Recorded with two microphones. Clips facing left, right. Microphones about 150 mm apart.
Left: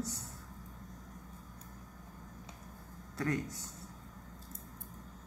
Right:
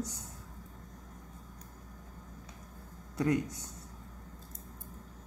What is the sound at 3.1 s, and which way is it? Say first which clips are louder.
Speech: right 5 dB; 15° right (ahead or behind).